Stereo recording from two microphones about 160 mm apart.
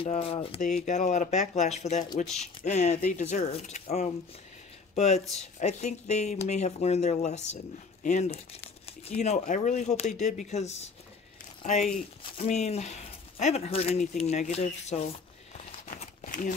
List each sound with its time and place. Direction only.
0.0 s speech: 35° left (ahead or behind)
0.7 s speech: 50° left (ahead or behind)
16.0 s crumpling: 55° left (ahead or behind)